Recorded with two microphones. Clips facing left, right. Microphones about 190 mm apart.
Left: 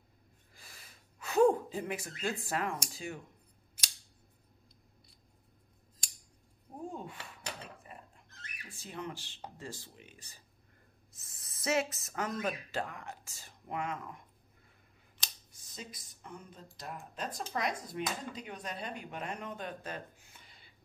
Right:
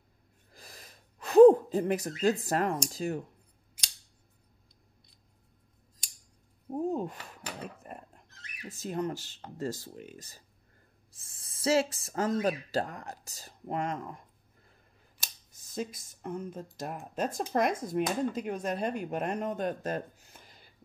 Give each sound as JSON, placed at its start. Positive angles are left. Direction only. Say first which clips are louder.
{"t": 0.5, "sound": "gasp", "louder": "right 7 dB", "side_deg": -40}
{"t": 2.9, "sound": "speech", "louder": "right 9 dB", "side_deg": -40}
{"t": 6.7, "sound": "a sound", "louder": "right 11 dB", "side_deg": -40}
{"t": 7.6, "sound": "dog", "louder": "right 8 dB", "side_deg": -50}
{"t": 8.6, "sound": "speech", "louder": "right 9 dB", "side_deg": -40}
{"t": 11.1, "sound": "speech", "louder": "right 1 dB", "side_deg": -30}
{"t": 15.7, "sound": "speech", "louder": "right 12 dB", "side_deg": -45}